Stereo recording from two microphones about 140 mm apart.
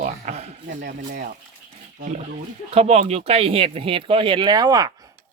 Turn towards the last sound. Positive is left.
turn(degrees=-25)  # may be behind; listen again after turning